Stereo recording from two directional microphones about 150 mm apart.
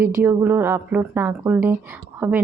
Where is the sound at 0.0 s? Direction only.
20° right (ahead or behind).